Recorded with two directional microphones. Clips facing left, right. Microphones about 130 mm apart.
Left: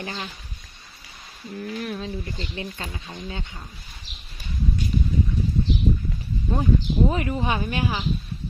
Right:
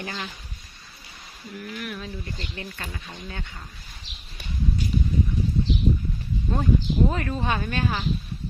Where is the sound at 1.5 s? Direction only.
30° left (ahead or behind).